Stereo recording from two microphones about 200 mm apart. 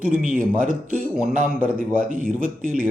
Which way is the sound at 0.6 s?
40° right (ahead or behind).